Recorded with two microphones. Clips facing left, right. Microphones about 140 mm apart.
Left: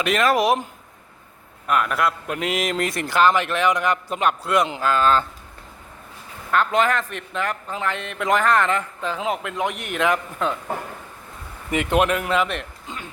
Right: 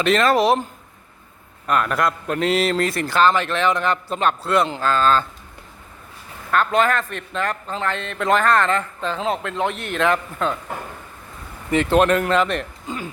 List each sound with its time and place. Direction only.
0.0 s a man's voice: 10° left (ahead or behind)
6.5 s a man's voice: 20° left (ahead or behind)
11.7 s speech: 10° left (ahead or behind)